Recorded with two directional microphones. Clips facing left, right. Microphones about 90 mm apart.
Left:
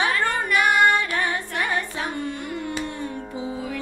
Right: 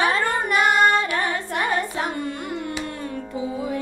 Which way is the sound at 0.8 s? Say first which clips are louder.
Right 1 dB; 20° right (ahead or behind).